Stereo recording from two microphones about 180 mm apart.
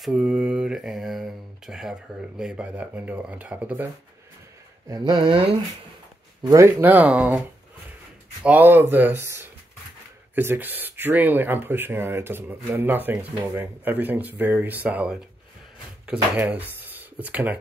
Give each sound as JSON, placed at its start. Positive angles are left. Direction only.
{"t": 0.0, "sound": "speech", "side_deg": -5}
{"t": 4.8, "sound": "speech", "side_deg": -20}
{"t": 6.4, "sound": "speech", "side_deg": -15}